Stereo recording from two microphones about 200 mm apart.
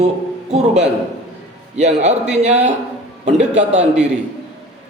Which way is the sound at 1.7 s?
35° right (ahead or behind).